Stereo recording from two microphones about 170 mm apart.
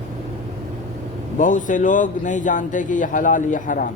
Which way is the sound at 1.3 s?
50° left (ahead or behind).